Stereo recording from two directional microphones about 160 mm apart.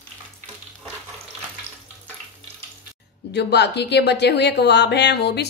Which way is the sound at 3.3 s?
90° left.